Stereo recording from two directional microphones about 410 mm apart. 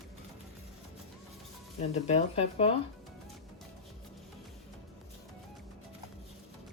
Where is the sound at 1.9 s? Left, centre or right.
Centre.